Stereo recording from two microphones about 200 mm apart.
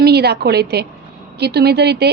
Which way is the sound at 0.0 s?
55° right (ahead or behind).